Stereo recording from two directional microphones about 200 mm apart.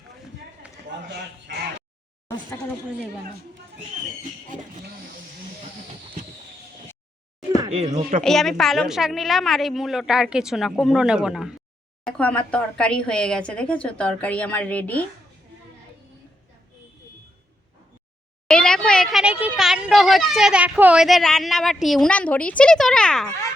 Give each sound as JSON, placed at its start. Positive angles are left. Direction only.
{"t": 7.7, "sound": "speech", "side_deg": -35}
{"t": 8.2, "sound": "speech", "side_deg": 0}
{"t": 18.4, "sound": "speech", "side_deg": 5}